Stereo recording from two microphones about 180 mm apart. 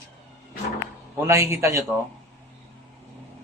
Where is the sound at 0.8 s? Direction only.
15° right (ahead or behind).